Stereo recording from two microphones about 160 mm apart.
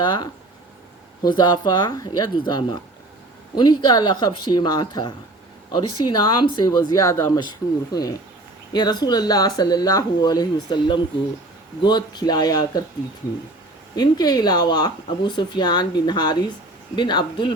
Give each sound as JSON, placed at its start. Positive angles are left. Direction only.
{"t": 0.0, "sound": "speech", "side_deg": 25}
{"t": 1.4, "sound": "speech", "side_deg": 25}
{"t": 13.9, "sound": "speech", "side_deg": 25}